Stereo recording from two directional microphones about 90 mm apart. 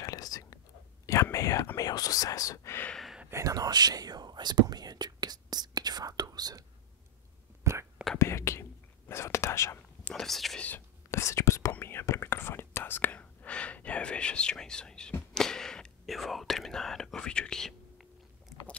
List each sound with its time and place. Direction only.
0.0 s whispering: 45° left (ahead or behind)
1.0 s speech: 35° left (ahead or behind)
2.9 s a sound: centre (ahead or behind)
3.3 s whispering: 35° right (ahead or behind)
7.7 s whispering: 35° right (ahead or behind)
8.2 s whispering: 30° left (ahead or behind)
10.1 s speech: centre (ahead or behind)
11.1 s whispering: 35° left (ahead or behind); by 18.0 s 5° left (ahead or behind)